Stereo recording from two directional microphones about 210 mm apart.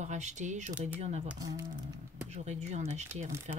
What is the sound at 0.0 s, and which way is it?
Speech, 35° right (ahead or behind).